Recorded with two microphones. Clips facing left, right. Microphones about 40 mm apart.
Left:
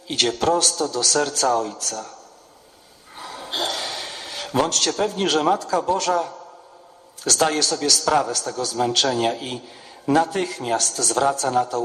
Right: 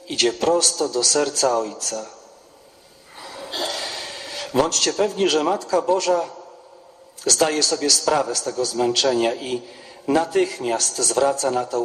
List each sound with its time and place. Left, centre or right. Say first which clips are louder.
0.1 s a man's voice: right 1 dB; left
3.2 s a sound: left 1 dB; left
4.9 s a man's voice: right 2 dB; left
7.5 s a man's voice: right 1 dB; left
8.4 s a man's voice: right 1 dB; left
10.8 s a man's voice: right 1 dB; left